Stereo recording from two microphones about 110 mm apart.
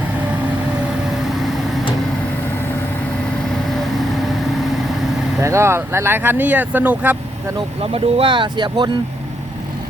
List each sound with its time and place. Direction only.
5.4 s speech: 25° right (ahead or behind)
7.8 s speech: 55° right (ahead or behind)